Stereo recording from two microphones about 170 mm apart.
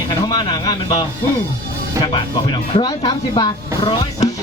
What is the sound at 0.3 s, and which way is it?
Speech, 25° left (ahead or behind).